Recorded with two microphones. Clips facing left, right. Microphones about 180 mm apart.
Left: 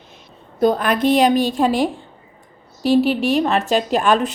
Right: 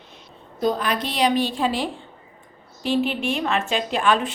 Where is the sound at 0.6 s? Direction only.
55° left (ahead or behind).